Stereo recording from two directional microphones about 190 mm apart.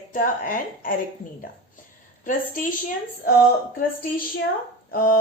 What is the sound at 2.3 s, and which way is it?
Speech, 45° left (ahead or behind).